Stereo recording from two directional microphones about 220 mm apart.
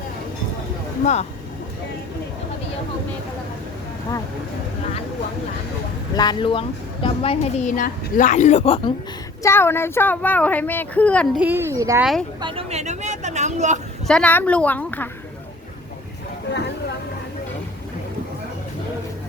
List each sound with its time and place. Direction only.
1.0 s a woman's voice: 30° left (ahead or behind)
6.1 s a woman's voice: 20° left (ahead or behind)
9.4 s speech: 10° left (ahead or behind)
11.3 s a child's voice: 10° right (ahead or behind)
12.4 s speech: 25° right (ahead or behind)
14.1 s speech: 5° left (ahead or behind)